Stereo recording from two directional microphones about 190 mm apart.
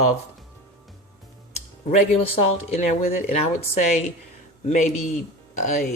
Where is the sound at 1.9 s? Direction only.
35° left (ahead or behind).